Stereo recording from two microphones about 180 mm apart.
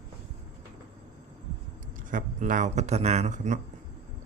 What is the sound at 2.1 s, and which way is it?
Speech, 45° right (ahead or behind).